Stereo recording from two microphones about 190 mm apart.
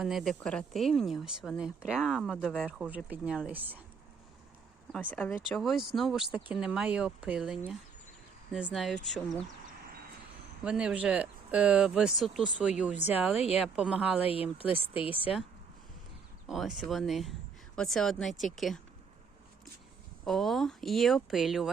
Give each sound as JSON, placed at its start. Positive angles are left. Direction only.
{"t": 0.0, "sound": "speech", "side_deg": 0}
{"t": 5.1, "sound": "speech", "side_deg": 5}
{"t": 10.6, "sound": "speech", "side_deg": -5}
{"t": 13.3, "sound": "speech", "side_deg": 30}
{"t": 13.7, "sound": "speech", "side_deg": -5}
{"t": 14.2, "sound": "speech", "side_deg": 30}
{"t": 16.5, "sound": "speech", "side_deg": 0}
{"t": 20.2, "sound": "speech", "side_deg": 0}